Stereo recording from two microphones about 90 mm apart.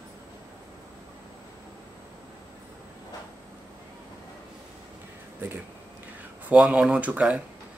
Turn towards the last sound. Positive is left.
turn(degrees=-15)  # may be behind; listen again after turning